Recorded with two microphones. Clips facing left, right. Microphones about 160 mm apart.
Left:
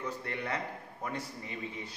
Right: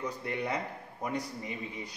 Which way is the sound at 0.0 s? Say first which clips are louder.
Right 3 dB; 15° right (ahead or behind).